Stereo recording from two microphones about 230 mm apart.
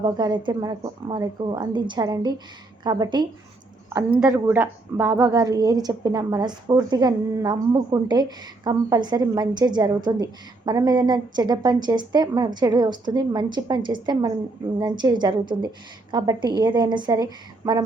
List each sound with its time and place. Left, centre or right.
0.0 s a woman's voice: centre
4.2 s a woman's voice: centre